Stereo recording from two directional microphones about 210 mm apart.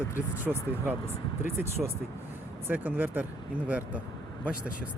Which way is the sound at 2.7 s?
10° right (ahead or behind).